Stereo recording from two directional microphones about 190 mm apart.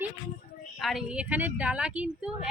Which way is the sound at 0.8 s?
Centre (ahead or behind).